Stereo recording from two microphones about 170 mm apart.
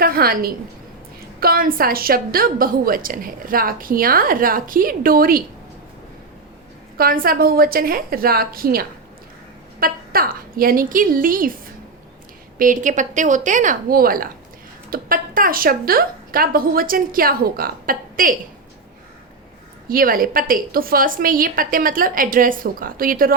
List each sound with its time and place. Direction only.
0.0 s a sound: 60° right (ahead or behind)
1.4 s a woman's voice: 60° right (ahead or behind)
6.9 s a woman's voice: 60° right (ahead or behind)
12.5 s a woman's voice: 50° right (ahead or behind)
19.9 s a woman's voice: 55° right (ahead or behind)